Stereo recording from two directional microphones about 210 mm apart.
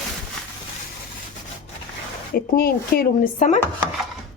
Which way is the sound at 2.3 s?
45° left (ahead or behind).